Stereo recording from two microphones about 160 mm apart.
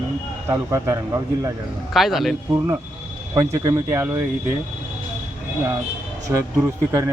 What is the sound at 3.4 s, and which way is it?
Speech, 20° right (ahead or behind).